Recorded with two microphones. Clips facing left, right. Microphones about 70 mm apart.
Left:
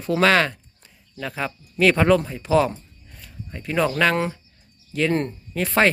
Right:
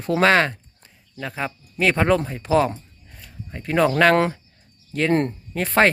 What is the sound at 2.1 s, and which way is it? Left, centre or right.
Speech, right.